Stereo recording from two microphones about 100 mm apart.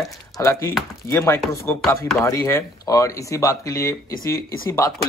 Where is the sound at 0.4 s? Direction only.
30° left (ahead or behind).